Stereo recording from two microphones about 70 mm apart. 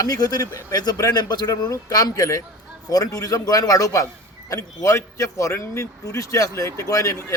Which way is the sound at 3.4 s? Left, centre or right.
Left.